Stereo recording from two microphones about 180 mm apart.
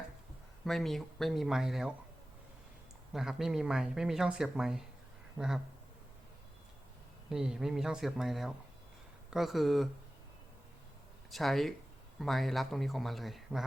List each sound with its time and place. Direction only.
0.6 s speech: centre (ahead or behind)
3.1 s speech: centre (ahead or behind)
7.3 s speech: 5° right (ahead or behind)
11.3 s speech: centre (ahead or behind)